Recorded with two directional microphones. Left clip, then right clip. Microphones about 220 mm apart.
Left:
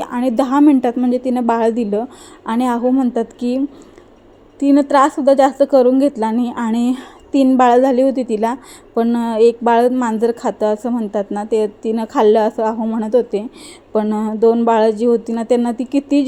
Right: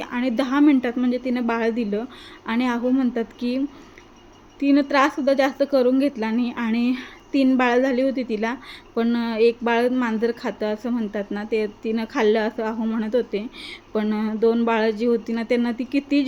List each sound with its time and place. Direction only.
0.0 s a woman's voice: 15° left (ahead or behind)
4.6 s a woman's voice: 15° left (ahead or behind)